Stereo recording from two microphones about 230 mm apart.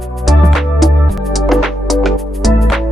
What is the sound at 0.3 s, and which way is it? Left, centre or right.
Music, centre.